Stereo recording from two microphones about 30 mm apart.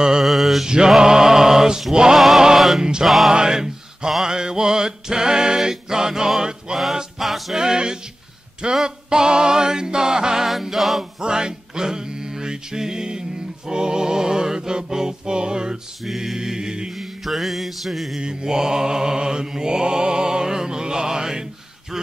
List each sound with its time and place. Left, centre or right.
0.2 s mantra: centre
0.7 s a sound: right
2.3 s music: centre
2.8 s a sound: right
5.6 s music: centre
7.2 s music: centre
7.5 s a sound: right
10.4 s music: centre
11.1 s music: right
16.9 s mantra: centre
18.2 s mantra: right
21.9 s quack: centre